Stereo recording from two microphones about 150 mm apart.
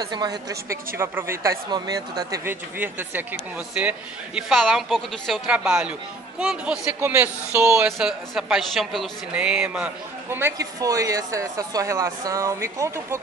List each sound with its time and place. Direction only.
0.0 s speech: 30° right (ahead or behind)
7.8 s speech: 5° right (ahead or behind)